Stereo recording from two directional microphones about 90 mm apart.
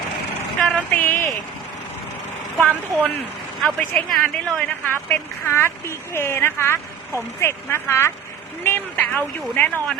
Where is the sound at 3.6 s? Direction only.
5° left (ahead or behind).